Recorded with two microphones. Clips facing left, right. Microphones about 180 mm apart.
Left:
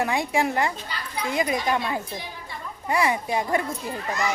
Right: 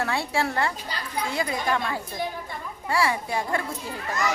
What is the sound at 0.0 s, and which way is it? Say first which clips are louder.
A man's voice: left 3 dB; 15° left (ahead or behind).